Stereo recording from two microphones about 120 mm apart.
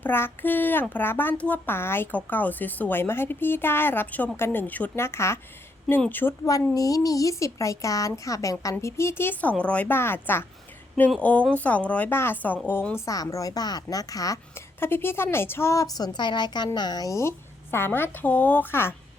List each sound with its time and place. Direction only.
0.0 s a child's voice: 15° left (ahead or behind)
6.7 s a woman's voice: 30° left (ahead or behind)
13.1 s a woman's voice: 30° left (ahead or behind)